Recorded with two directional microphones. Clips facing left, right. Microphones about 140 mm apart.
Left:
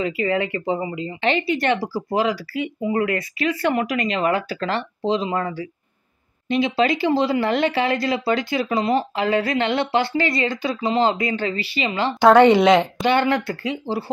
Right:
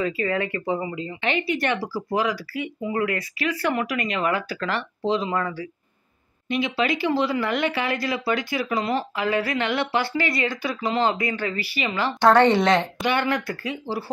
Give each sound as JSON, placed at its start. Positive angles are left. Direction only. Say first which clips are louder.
{"t": 0.0, "sound": "speech", "louder": "left 3 dB", "side_deg": 20}
{"t": 12.2, "sound": "a woman's voice", "louder": "left 4 dB", "side_deg": 10}
{"t": 13.0, "sound": "speech", "louder": "left 4 dB", "side_deg": 30}